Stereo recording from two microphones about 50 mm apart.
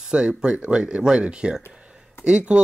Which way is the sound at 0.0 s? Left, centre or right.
Centre.